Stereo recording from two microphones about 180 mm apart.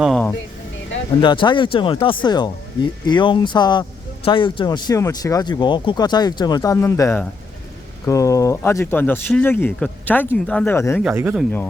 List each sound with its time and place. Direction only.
0.0 s a sound: centre (ahead or behind)
1.2 s speech: 25° left (ahead or behind)
11.0 s speech: 10° right (ahead or behind)